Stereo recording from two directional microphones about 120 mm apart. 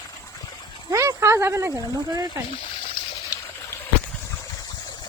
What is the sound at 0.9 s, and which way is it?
Speech, 25° right (ahead or behind).